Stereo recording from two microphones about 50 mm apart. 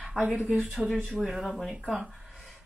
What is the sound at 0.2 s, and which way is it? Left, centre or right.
Speech, right.